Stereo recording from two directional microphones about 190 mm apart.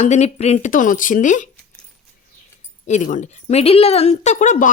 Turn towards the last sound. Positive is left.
turn(degrees=40)  # may be behind; listen again after turning